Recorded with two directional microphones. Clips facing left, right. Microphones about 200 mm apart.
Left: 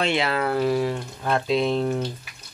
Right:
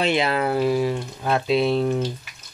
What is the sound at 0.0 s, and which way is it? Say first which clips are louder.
Speech: right 2 dB; 15° right (ahead or behind).